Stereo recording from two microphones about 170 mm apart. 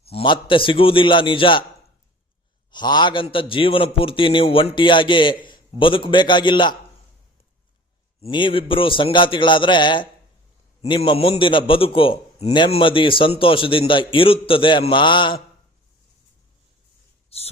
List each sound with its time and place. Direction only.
0.0 s a man's voice: 35° left (ahead or behind)
2.7 s a man's voice: 25° left (ahead or behind)
8.2 s a man's voice: 30° left (ahead or behind)
17.2 s a sound: 35° left (ahead or behind)